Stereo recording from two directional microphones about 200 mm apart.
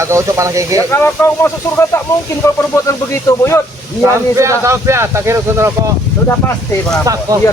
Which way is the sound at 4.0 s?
15° right (ahead or behind).